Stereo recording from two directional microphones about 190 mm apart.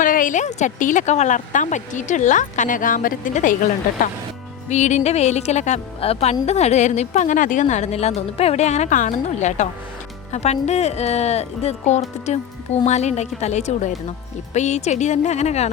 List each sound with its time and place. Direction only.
0.0 s speech: 45° left (ahead or behind)
4.7 s speech: 40° left (ahead or behind)